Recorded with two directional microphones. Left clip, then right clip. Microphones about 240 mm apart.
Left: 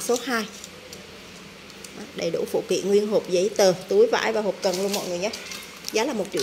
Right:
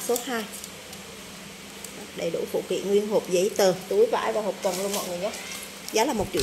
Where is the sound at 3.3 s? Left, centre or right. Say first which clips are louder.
Left 3 dB; centre.